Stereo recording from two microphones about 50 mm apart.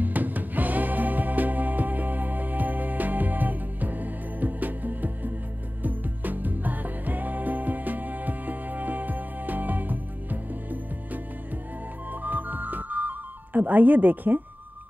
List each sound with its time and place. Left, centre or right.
0.0 s music: right
12.1 s music: right